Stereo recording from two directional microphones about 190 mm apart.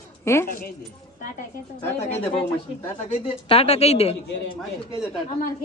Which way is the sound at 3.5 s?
30° left (ahead or behind).